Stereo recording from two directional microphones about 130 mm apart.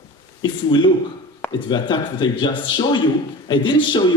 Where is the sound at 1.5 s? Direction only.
35° left (ahead or behind).